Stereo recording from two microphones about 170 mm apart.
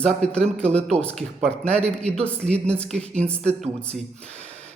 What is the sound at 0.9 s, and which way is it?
Speech, 40° right (ahead or behind).